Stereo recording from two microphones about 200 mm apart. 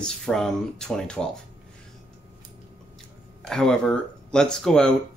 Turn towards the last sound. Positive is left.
turn(degrees=5)  # may be behind; listen again after turning